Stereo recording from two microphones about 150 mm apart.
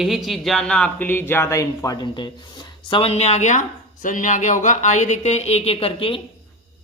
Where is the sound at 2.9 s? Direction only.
40° left (ahead or behind).